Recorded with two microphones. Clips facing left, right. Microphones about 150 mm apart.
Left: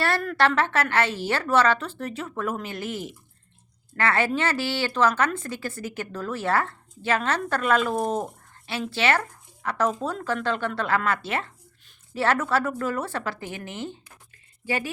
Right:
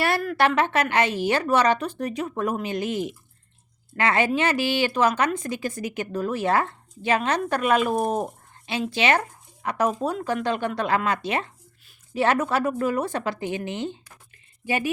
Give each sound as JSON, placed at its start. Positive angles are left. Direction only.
{"t": 0.0, "sound": "a woman's voice", "side_deg": -10}